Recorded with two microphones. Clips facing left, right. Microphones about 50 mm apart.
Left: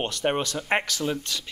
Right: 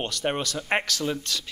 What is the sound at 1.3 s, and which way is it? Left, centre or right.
Speech, left.